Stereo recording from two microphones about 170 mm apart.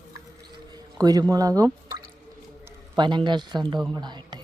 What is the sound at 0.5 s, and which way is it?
Drip, 20° right (ahead or behind).